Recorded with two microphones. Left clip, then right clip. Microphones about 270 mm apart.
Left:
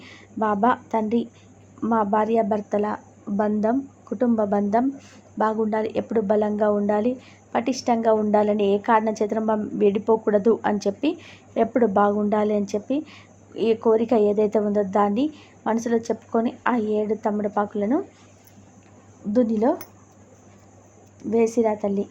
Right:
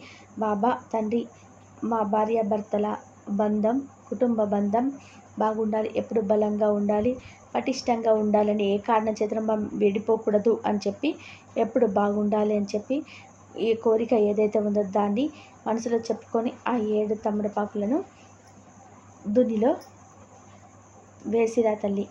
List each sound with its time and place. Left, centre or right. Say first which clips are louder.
0.0 s speech: left 4 dB; centre
19.3 s speech: left 1 dB; centre
21.2 s speech: left 2 dB; centre